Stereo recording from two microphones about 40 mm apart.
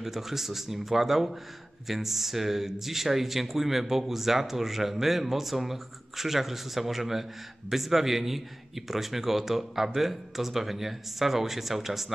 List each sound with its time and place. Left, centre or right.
0.0 s a man's voice: centre